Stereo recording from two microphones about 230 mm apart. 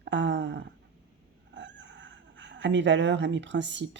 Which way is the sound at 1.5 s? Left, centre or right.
Right.